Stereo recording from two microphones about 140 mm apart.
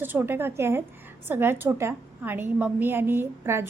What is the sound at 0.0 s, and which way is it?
A woman's voice, 15° right (ahead or behind).